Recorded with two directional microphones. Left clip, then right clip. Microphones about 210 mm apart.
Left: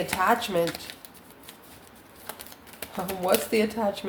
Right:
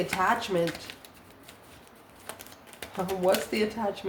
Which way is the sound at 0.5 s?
35° left (ahead or behind).